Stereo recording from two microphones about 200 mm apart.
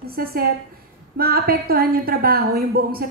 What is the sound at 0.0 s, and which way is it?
A woman's voice, 50° right (ahead or behind).